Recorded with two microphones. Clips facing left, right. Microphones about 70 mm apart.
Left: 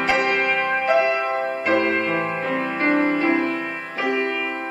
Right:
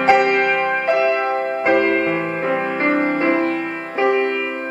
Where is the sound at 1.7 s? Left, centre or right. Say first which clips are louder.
Right 4 dB; right.